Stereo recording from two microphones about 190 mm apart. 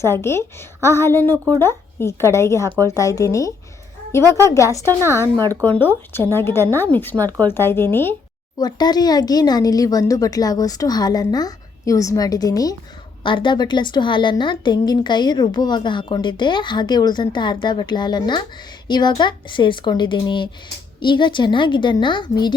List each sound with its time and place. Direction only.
0.0 s speech: 15° left (ahead or behind)
4.2 s a woman's voice: 20° right (ahead or behind)
4.4 s speech: 15° left (ahead or behind)
5.4 s a woman's voice: 15° right (ahead or behind)
5.6 s a woman's voice: 10° left (ahead or behind)